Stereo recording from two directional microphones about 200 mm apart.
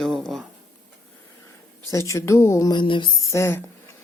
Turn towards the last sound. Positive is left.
turn(degrees=15)  # may be behind; listen again after turning